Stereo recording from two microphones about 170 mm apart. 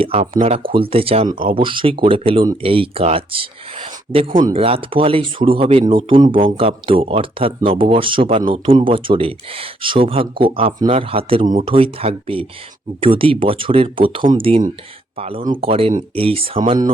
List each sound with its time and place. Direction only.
0.0 s speech: 35° right (ahead or behind)
4.5 s speech: 35° right (ahead or behind)